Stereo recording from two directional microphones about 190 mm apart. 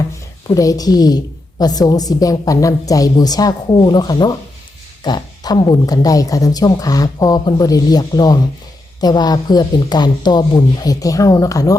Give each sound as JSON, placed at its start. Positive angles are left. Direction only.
{"t": 0.4, "sound": "a woman's voice", "side_deg": 20}